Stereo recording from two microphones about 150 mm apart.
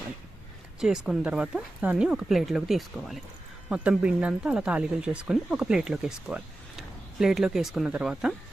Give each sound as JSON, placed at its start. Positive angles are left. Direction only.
{"t": 0.8, "sound": "speech", "side_deg": -5}